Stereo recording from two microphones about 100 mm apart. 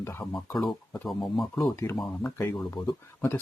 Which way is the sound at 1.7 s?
25° left (ahead or behind).